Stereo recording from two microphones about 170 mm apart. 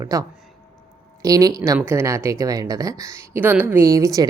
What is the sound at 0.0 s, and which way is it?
Speech, 20° right (ahead or behind).